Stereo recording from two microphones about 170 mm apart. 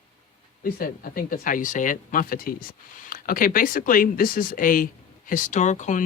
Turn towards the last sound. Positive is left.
turn(degrees=45)  # may be behind; listen again after turning